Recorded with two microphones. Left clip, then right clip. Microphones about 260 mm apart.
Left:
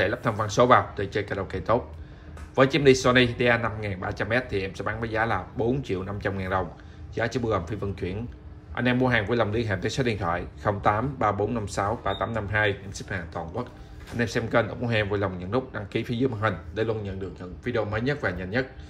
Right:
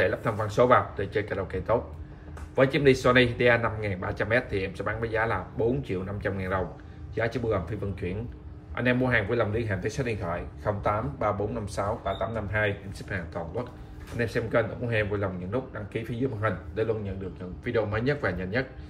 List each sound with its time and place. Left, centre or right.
0.0 s speech: centre
13.1 s speech: centre